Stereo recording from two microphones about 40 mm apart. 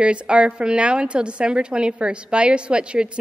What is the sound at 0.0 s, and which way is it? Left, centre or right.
A woman's voice, right.